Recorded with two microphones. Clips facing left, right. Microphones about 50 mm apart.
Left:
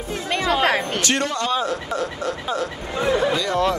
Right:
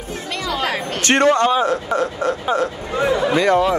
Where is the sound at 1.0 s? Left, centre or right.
Right.